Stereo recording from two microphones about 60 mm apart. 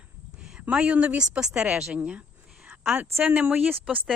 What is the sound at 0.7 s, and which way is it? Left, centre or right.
Speech, centre.